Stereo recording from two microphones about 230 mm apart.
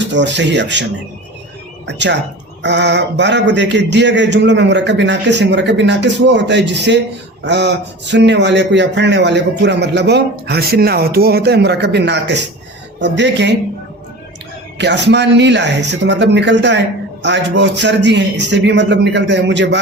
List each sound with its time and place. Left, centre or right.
0.0 s speech: right
1.9 s speech: right
14.8 s speech: right